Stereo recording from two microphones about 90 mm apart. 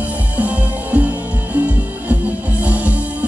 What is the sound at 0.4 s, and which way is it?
Music, 15° right (ahead or behind).